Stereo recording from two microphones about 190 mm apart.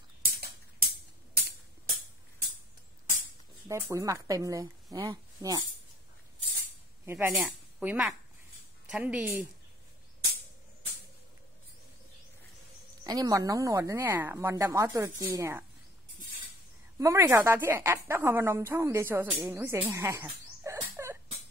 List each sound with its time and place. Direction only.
0.3 s a sound: 50° right (ahead or behind)
3.6 s a woman's voice: 15° right (ahead or behind)
7.1 s a woman's voice: 10° right (ahead or behind)
13.0 s a woman's voice: 20° right (ahead or behind)
17.0 s a woman's voice: 15° right (ahead or behind)